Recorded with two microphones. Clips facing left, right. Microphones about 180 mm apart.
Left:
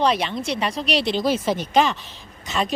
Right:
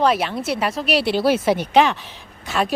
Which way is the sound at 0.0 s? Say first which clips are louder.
Right 2 dB; 5° right (ahead or behind).